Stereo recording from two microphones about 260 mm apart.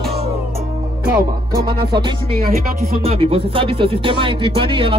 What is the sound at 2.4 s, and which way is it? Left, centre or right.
Speech, right.